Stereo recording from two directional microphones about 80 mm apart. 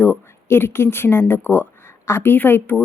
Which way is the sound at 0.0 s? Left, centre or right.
Left.